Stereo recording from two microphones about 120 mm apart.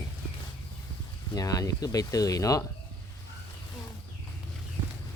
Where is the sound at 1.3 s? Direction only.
30° left (ahead or behind).